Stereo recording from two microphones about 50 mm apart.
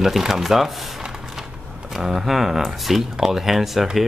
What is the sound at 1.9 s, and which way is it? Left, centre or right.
A man's voice, centre.